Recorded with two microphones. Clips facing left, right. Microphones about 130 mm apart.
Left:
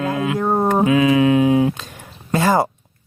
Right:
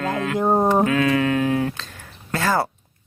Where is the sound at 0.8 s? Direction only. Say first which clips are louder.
Left 5 dB; 15° left (ahead or behind).